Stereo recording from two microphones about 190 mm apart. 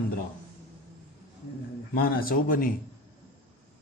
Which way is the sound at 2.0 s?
50° left (ahead or behind).